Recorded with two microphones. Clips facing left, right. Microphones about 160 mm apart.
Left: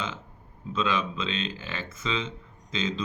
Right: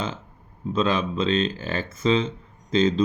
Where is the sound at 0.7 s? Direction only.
40° right (ahead or behind).